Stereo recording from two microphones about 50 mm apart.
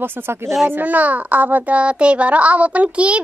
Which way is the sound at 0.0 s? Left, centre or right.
Right.